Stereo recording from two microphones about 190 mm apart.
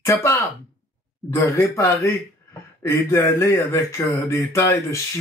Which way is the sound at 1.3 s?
15° left (ahead or behind).